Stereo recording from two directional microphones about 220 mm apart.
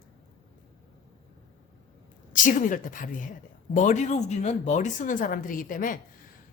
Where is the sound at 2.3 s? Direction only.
35° left (ahead or behind).